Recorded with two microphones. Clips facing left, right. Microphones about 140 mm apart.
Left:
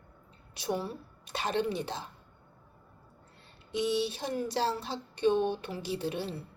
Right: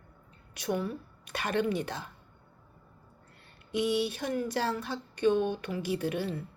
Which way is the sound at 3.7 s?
25° left (ahead or behind).